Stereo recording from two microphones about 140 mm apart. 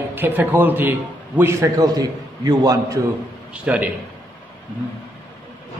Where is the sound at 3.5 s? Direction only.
10° right (ahead or behind).